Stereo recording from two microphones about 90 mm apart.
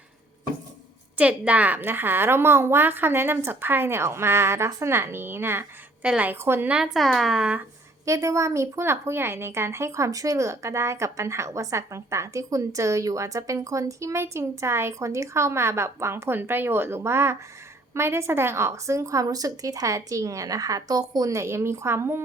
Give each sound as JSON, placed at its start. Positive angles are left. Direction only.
{"t": 1.1, "sound": "a woman's voice", "side_deg": -15}
{"t": 6.3, "sound": "a woman's voice", "side_deg": -25}
{"t": 6.7, "sound": "speech", "side_deg": -10}
{"t": 8.0, "sound": "a woman's voice", "side_deg": -35}